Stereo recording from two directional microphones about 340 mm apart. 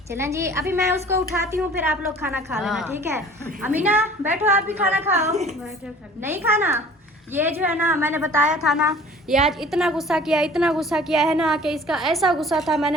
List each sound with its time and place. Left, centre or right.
0.1 s a woman's voice: centre
5.2 s a woman's voice: centre
6.2 s a woman's voice: centre